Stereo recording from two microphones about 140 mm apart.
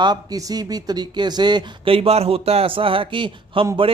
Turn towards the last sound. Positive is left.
turn(degrees=-35)  # may be behind; listen again after turning